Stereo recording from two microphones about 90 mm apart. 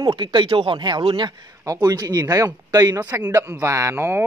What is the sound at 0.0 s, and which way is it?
Speech, 60° right (ahead or behind).